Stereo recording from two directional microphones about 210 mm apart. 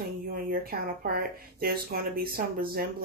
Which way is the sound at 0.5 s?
45° right (ahead or behind).